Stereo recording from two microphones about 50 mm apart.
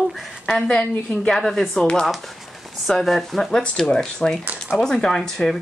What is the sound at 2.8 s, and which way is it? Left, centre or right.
Speech, centre.